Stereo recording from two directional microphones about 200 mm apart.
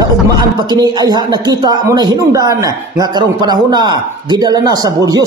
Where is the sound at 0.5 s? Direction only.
20° right (ahead or behind).